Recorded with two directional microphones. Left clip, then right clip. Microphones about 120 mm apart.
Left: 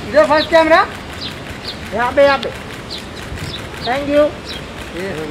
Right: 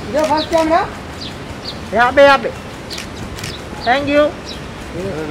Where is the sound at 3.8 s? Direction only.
45° right (ahead or behind).